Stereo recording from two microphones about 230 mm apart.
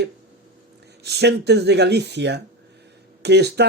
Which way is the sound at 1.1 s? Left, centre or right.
Right.